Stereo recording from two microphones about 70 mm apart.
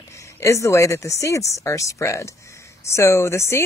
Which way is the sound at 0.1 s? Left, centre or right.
Left.